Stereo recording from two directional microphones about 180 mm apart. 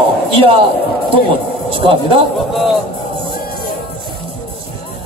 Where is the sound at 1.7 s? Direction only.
30° right (ahead or behind).